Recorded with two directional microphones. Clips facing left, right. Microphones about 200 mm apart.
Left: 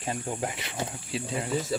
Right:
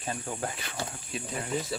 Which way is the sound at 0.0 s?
20° left (ahead or behind).